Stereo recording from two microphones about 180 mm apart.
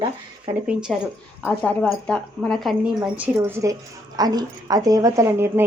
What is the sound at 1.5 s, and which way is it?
A woman's voice, 10° left (ahead or behind).